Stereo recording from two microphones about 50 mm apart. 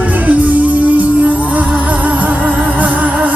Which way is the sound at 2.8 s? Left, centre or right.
Right.